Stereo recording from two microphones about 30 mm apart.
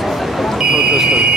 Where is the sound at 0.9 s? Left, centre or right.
Centre.